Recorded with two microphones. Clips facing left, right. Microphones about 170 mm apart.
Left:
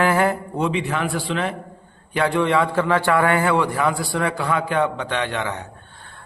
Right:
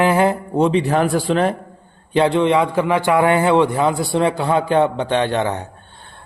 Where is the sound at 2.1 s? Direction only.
25° right (ahead or behind).